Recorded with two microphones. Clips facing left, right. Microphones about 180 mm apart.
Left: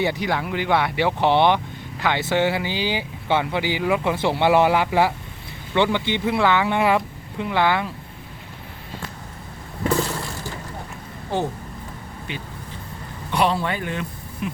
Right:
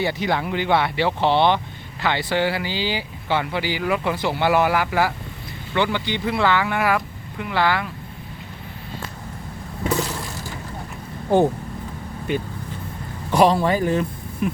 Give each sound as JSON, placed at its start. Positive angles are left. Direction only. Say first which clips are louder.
{"t": 0.0, "sound": "speech", "louder": "even", "side_deg": 10}
{"t": 12.3, "sound": "speech", "louder": "right 10 dB", "side_deg": -50}